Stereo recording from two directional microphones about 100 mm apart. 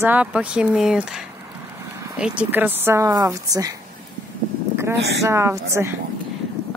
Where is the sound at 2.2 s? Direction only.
15° right (ahead or behind); by 3.8 s 35° right (ahead or behind).